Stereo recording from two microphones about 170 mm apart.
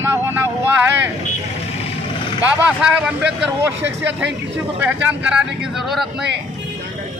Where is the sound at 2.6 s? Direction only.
5° right (ahead or behind).